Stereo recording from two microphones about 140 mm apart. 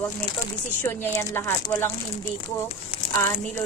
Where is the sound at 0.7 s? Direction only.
15° left (ahead or behind).